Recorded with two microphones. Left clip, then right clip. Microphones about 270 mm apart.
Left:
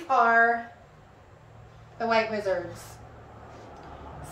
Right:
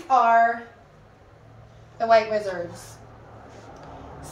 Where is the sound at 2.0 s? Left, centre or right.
Centre.